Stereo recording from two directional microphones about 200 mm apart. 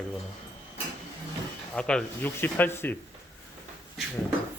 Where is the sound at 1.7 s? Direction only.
5° left (ahead or behind).